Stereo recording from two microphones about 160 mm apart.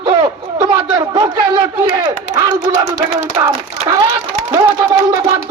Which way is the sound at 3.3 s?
25° right (ahead or behind).